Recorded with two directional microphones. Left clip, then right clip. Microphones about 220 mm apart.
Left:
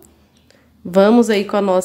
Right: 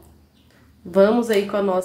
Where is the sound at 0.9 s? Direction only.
45° left (ahead or behind).